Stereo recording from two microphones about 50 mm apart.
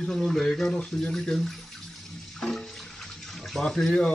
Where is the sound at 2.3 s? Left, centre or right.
Centre.